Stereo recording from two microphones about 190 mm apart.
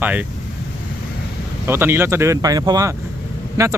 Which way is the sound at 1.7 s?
10° right (ahead or behind).